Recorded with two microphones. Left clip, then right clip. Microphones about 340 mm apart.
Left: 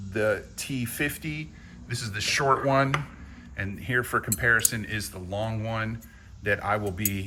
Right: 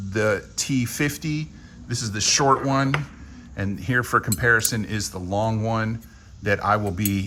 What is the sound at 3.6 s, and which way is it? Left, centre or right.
Speech, centre.